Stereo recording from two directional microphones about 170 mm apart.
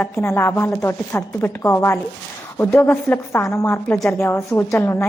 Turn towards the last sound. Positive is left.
turn(degrees=15)  # may be behind; listen again after turning